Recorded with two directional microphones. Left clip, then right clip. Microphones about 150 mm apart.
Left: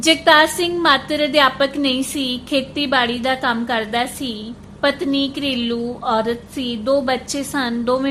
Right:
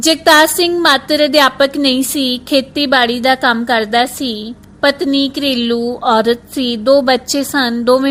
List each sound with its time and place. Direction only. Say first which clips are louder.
0.0 s a woman's voice: right 4 dB; 40° right (ahead or behind)